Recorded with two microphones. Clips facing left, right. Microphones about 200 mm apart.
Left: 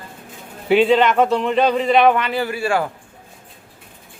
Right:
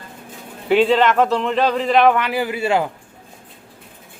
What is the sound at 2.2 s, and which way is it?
Speech, 10° right (ahead or behind).